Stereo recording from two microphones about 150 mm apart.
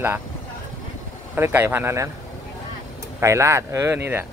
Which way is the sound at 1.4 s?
15° right (ahead or behind).